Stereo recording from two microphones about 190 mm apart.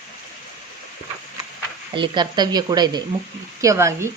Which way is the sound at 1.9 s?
20° right (ahead or behind).